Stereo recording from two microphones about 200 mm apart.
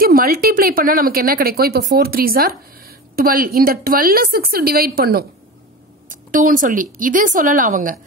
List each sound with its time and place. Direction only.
0.0 s speech: 45° right (ahead or behind)